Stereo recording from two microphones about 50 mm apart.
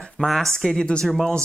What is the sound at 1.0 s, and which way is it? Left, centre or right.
Speech, centre.